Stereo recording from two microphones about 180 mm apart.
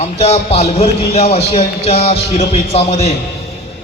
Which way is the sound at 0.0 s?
35° left (ahead or behind).